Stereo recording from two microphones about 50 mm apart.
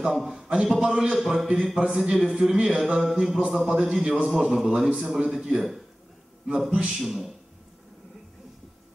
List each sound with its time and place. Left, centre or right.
0.0 s a man's voice: centre
6.7 s speech: right
7.0 s speech: centre